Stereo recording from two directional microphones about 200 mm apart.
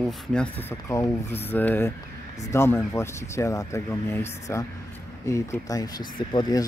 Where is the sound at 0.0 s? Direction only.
5° left (ahead or behind).